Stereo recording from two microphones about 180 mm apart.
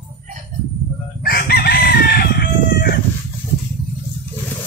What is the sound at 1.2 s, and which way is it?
Chicken, 55° left (ahead or behind).